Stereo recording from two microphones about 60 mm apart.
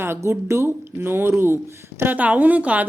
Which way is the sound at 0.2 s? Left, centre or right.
Right.